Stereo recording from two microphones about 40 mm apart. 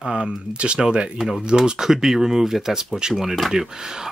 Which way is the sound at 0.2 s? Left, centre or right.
Right.